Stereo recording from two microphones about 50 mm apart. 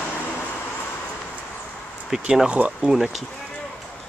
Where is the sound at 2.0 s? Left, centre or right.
Centre.